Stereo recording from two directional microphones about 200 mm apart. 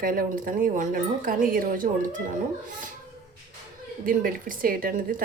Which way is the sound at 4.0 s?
45° right (ahead or behind).